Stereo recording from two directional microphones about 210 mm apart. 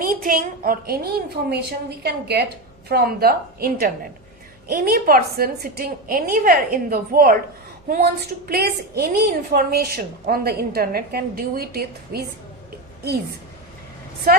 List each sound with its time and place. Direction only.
0.0 s a woman's voice: 45° right (ahead or behind)